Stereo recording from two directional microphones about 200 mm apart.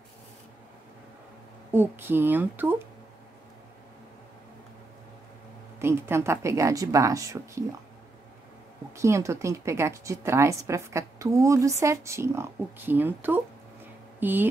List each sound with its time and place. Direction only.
1.7 s a woman's voice: 10° right (ahead or behind)
5.8 s a woman's voice: 10° right (ahead or behind)
8.9 s a woman's voice: 15° right (ahead or behind)